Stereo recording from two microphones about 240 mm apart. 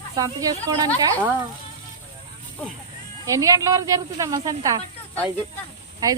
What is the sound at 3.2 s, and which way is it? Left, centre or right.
Speech, centre.